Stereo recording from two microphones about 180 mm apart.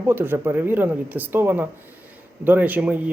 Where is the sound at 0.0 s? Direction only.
10° right (ahead or behind).